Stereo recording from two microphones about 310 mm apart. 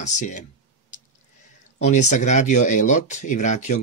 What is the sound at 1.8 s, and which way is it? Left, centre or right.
Speech, left.